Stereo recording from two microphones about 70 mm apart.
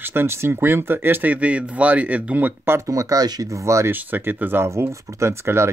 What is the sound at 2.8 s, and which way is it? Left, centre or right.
Speech, right.